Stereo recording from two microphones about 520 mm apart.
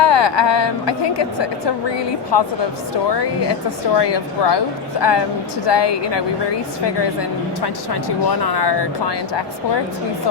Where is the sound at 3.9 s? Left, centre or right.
Left.